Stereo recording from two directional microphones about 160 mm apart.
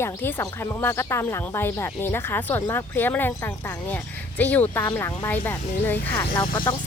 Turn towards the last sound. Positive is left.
turn(degrees=30)  # may be behind; listen again after turning